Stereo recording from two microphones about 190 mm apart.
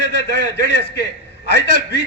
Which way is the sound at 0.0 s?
65° left (ahead or behind).